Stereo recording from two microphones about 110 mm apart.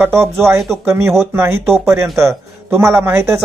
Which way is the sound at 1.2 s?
20° right (ahead or behind).